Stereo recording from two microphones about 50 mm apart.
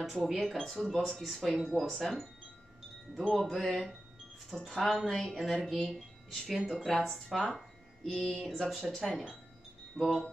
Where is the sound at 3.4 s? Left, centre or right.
Centre.